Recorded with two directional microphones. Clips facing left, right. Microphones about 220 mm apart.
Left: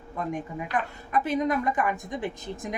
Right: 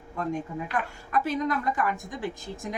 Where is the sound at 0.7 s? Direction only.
20° left (ahead or behind).